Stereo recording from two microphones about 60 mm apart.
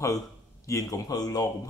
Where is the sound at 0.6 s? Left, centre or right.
Left.